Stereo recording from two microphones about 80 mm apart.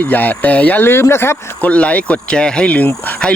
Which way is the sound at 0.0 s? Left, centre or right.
Left.